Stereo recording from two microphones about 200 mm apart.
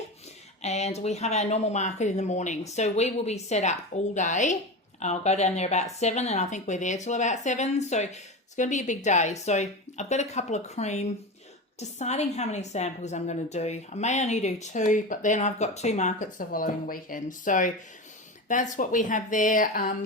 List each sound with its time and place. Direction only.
0.6 s a woman's voice: 35° left (ahead or behind)